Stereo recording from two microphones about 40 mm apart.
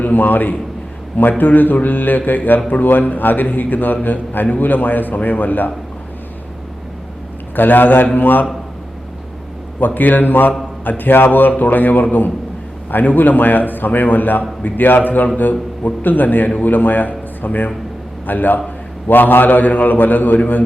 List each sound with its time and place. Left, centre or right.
0.0 s a man's voice: left
7.5 s a man's voice: left
9.8 s a man's voice: left